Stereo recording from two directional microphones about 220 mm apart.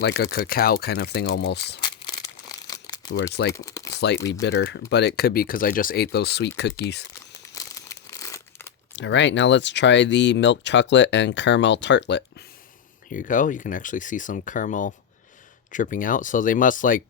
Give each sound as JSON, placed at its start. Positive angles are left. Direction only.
{"t": 0.0, "sound": "speech", "side_deg": 50}
{"t": 1.8, "sound": "a sound", "side_deg": 20}
{"t": 3.5, "sound": "speech", "side_deg": 15}
{"t": 4.4, "sound": "speech", "side_deg": 55}
{"t": 7.5, "sound": "crumpling", "side_deg": 15}
{"t": 8.9, "sound": "speech", "side_deg": 55}
{"t": 13.1, "sound": "speech", "side_deg": 35}